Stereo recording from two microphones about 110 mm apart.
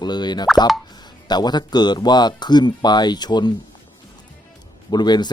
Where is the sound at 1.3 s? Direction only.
40° left (ahead or behind).